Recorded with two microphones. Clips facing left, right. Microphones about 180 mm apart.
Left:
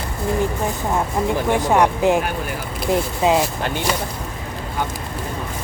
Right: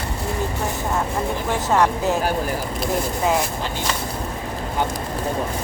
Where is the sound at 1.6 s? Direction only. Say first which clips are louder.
Left 2 dB; 15° left (ahead or behind).